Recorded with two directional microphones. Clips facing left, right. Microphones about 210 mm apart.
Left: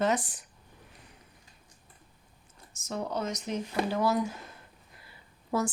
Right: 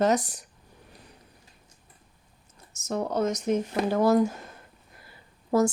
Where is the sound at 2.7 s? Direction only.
45° right (ahead or behind).